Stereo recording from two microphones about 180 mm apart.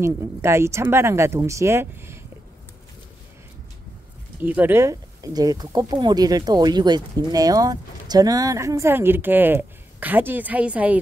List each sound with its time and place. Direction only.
0.0 s speech: 15° right (ahead or behind)
4.4 s speech: 10° right (ahead or behind)